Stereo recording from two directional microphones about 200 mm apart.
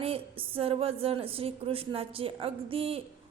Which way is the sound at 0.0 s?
30° right (ahead or behind).